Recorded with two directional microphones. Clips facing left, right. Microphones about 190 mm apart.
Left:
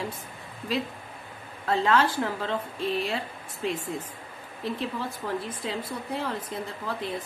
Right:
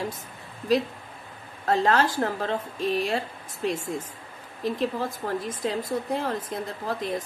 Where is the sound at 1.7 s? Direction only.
40° right (ahead or behind).